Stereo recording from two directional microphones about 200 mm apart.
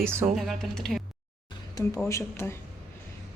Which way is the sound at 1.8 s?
20° left (ahead or behind).